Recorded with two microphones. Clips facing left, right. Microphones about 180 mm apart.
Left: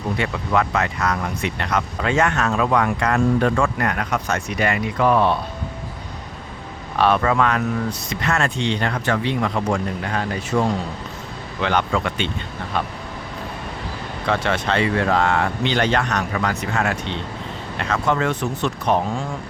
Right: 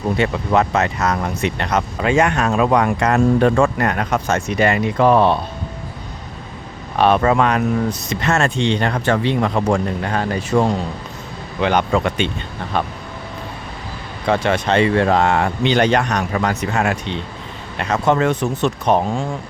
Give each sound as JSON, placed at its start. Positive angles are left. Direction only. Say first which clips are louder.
{"t": 0.2, "sound": "speech", "louder": "right 4 dB", "side_deg": -25}
{"t": 7.0, "sound": "speech", "louder": "right 3 dB", "side_deg": -25}
{"t": 9.6, "sound": "speech", "louder": "right 4 dB", "side_deg": -40}
{"t": 11.6, "sound": "speech", "louder": "right 4 dB", "side_deg": -15}
{"t": 14.3, "sound": "speech", "louder": "right 4 dB", "side_deg": -15}